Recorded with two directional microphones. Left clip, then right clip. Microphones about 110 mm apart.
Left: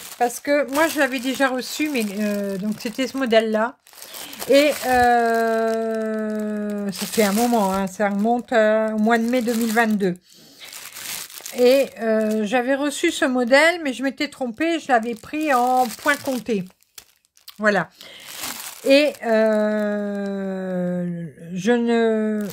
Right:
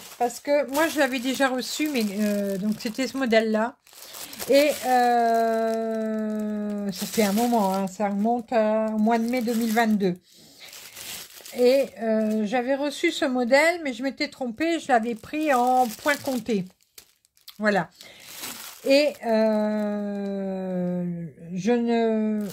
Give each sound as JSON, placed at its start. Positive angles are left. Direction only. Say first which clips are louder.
{"t": 0.2, "sound": "speech", "louder": "left 3 dB", "side_deg": 25}
{"t": 0.7, "sound": "speech", "louder": "left 3 dB", "side_deg": 5}
{"t": 11.5, "sound": "speech", "louder": "left 4 dB", "side_deg": 25}
{"t": 14.9, "sound": "speech", "louder": "left 1 dB", "side_deg": 10}
{"t": 18.9, "sound": "speech", "louder": "left 4 dB", "side_deg": 30}